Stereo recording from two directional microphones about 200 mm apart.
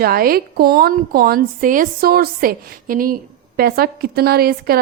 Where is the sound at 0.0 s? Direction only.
50° right (ahead or behind).